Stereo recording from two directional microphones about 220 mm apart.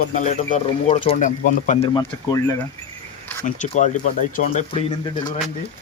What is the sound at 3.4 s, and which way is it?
Speech, 35° left (ahead or behind).